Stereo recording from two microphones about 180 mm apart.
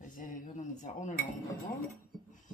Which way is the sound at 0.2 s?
50° left (ahead or behind).